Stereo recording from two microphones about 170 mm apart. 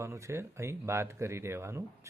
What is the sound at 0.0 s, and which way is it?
Speech, 15° right (ahead or behind).